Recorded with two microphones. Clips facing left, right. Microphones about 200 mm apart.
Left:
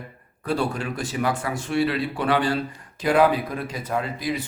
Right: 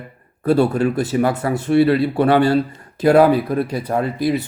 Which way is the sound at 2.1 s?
55° right (ahead or behind).